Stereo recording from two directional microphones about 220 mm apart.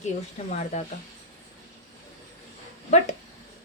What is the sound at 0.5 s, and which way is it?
Speech, 30° left (ahead or behind).